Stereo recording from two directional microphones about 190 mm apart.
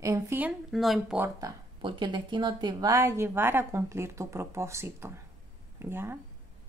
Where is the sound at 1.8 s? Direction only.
25° right (ahead or behind).